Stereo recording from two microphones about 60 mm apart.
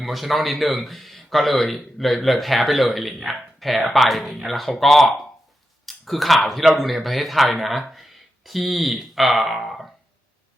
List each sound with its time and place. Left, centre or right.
0.0 s speech: centre